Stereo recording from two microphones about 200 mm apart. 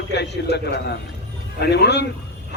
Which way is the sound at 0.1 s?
60° left (ahead or behind).